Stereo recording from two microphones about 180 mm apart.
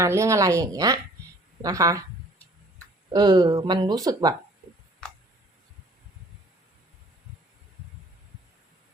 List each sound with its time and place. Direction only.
0.0 s speech: 15° right (ahead or behind)
3.1 s speech: 20° right (ahead or behind)